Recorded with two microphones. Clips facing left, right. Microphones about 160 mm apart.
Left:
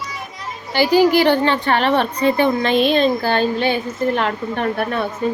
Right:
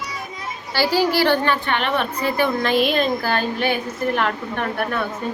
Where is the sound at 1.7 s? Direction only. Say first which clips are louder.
Left 5 dB; 35° left (ahead or behind).